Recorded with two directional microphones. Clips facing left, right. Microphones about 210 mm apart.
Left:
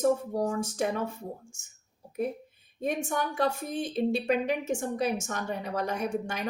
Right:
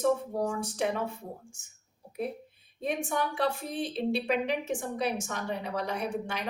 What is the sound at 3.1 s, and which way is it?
A woman's voice, 45° left (ahead or behind).